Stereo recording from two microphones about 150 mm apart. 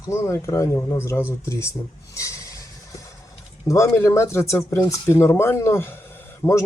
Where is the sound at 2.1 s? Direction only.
20° left (ahead or behind).